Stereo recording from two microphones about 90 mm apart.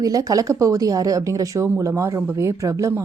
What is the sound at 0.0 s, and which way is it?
A woman's voice, 40° right (ahead or behind).